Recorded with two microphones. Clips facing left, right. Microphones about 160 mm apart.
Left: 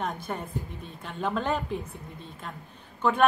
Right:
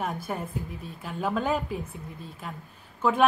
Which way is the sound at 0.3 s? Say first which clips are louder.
Right 1 dB; 5° right (ahead or behind).